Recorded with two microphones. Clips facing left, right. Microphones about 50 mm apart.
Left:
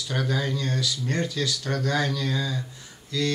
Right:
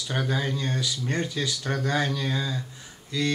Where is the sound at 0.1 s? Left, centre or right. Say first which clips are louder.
Left 1 dB; centre.